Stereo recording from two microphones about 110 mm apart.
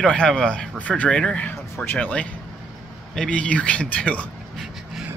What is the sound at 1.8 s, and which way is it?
Speech, 20° left (ahead or behind).